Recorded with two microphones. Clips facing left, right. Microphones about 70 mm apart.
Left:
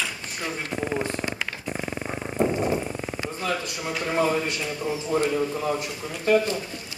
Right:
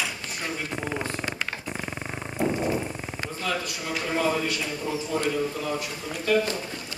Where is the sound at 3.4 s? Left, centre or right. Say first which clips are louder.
Even; left.